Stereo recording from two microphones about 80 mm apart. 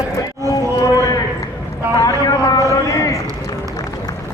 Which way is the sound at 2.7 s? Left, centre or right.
Left.